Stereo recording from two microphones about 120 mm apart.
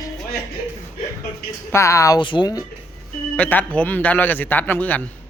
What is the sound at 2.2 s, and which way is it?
Speech, 40° left (ahead or behind).